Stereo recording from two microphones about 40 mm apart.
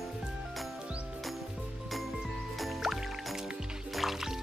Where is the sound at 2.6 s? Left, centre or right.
Centre.